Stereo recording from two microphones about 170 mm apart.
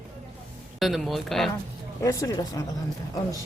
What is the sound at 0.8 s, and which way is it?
Speech, centre (ahead or behind).